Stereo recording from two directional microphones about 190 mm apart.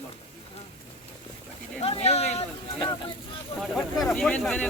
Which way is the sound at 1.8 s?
35° left (ahead or behind).